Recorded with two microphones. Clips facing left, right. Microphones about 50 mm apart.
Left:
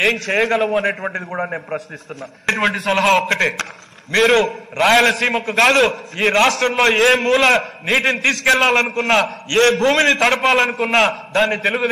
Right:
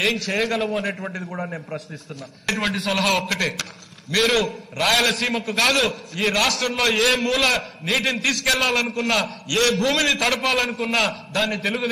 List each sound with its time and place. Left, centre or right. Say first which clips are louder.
0.0 s a man's voice: left 5 dB; left
1.3 s a man's voice: left 7 dB; left
2.4 s a man's voice: left 6 dB; left